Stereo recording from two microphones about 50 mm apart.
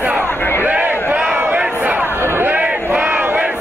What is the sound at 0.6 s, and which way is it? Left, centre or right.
Crowd, right.